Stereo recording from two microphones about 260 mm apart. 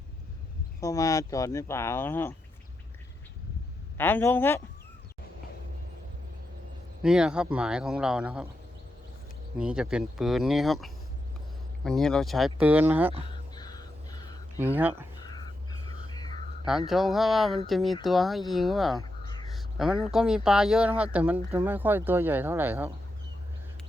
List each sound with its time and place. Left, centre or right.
0.8 s speech: centre
3.9 s speech: centre
7.0 s a man's voice: centre
9.6 s a man's voice: centre
13.6 s music: centre
14.6 s speech: centre
15.2 s a sound: centre
16.6 s a man's voice: centre
19.2 s a sound: centre
19.7 s speech: centre